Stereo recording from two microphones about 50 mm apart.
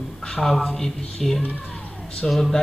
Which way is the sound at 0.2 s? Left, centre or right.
Centre.